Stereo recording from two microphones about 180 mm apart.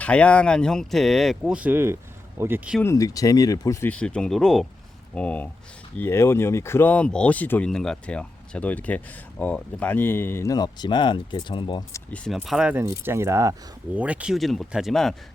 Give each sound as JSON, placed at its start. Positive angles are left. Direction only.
{"t": 0.0, "sound": "speech", "side_deg": 5}
{"t": 2.8, "sound": "speech", "side_deg": 20}
{"t": 12.1, "sound": "speech", "side_deg": 5}
{"t": 12.5, "sound": "speech", "side_deg": -5}